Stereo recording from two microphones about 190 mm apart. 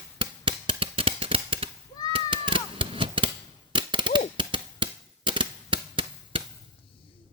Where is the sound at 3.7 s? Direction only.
25° right (ahead or behind).